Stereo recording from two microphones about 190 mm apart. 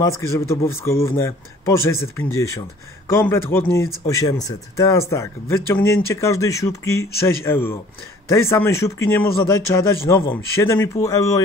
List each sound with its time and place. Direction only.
0.2 s a man's voice: 15° left (ahead or behind)